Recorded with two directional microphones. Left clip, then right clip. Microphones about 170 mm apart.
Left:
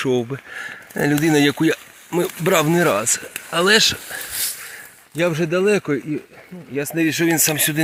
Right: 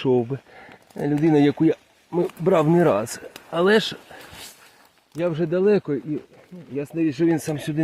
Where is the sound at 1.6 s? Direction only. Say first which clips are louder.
Left 1 dB; 5° right (ahead or behind).